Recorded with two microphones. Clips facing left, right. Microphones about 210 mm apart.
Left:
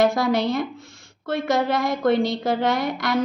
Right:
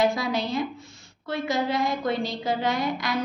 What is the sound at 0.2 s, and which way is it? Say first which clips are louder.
A woman's voice: left 5 dB; 80° left.